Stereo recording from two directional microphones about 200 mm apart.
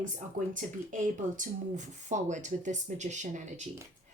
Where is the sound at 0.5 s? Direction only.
40° right (ahead or behind).